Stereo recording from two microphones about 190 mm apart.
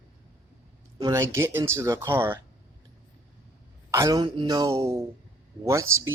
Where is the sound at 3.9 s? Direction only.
20° right (ahead or behind).